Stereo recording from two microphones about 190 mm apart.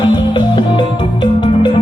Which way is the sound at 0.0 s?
25° left (ahead or behind).